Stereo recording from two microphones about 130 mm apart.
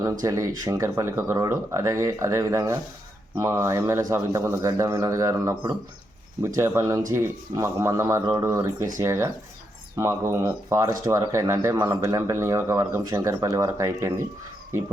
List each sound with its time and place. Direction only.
0.0 s speech: 25° right (ahead or behind)